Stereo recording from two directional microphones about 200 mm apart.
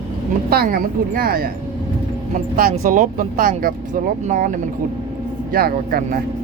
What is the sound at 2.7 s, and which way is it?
Speech, 40° right (ahead or behind).